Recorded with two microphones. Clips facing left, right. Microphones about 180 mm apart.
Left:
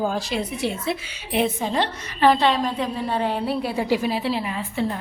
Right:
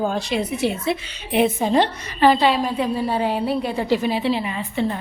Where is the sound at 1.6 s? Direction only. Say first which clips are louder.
Right 5 dB; 15° right (ahead or behind).